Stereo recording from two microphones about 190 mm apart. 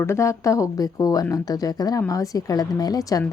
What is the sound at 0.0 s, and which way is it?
Speech, 15° left (ahead or behind).